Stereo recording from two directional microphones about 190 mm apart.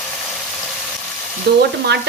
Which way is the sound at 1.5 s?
55° right (ahead or behind).